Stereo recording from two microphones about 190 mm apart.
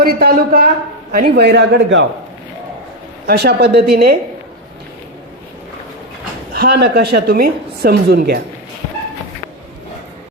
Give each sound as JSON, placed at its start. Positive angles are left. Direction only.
{"t": 0.0, "sound": "a man's voice", "side_deg": -55}
{"t": 3.2, "sound": "a woman's voice", "side_deg": -60}
{"t": 6.5, "sound": "a woman's voice", "side_deg": -55}